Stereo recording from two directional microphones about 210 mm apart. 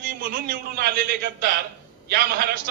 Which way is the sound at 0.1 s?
45° right (ahead or behind).